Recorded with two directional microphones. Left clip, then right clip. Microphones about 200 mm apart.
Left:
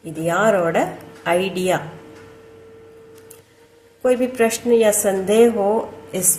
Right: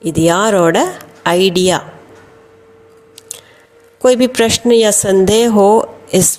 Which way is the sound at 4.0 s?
45° right (ahead or behind).